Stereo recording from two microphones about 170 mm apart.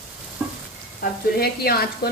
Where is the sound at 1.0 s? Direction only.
65° left (ahead or behind).